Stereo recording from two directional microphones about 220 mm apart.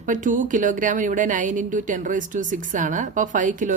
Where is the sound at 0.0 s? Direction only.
35° right (ahead or behind).